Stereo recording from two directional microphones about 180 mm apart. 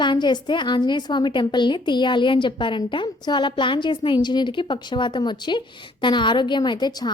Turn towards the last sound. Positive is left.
turn(degrees=25)  # may be behind; listen again after turning